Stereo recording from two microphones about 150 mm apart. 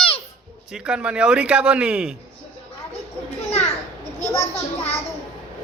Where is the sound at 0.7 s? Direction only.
5° right (ahead or behind).